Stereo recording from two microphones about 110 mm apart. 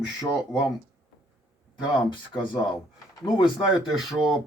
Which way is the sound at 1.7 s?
45° left (ahead or behind).